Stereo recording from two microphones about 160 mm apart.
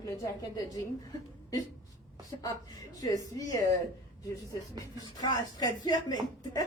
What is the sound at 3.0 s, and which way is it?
Speech, 20° left (ahead or behind).